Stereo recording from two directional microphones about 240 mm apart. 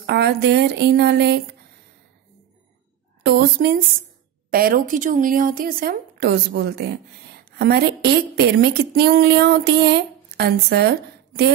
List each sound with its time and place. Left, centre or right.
0.0 s speech: right
3.3 s a woman's voice: right